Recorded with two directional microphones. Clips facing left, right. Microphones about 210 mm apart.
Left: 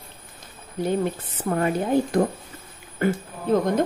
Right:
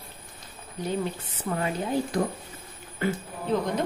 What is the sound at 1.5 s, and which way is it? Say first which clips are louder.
A woman's voice: left 6 dB; 55° left (ahead or behind).